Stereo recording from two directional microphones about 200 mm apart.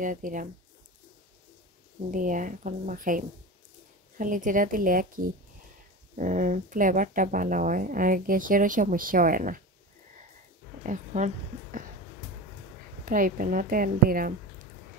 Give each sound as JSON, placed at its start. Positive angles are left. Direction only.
{"t": 0.0, "sound": "speech", "side_deg": -40}
{"t": 2.0, "sound": "speech", "side_deg": -40}
{"t": 10.8, "sound": "a woman's voice", "side_deg": -40}
{"t": 13.0, "sound": "speech", "side_deg": -40}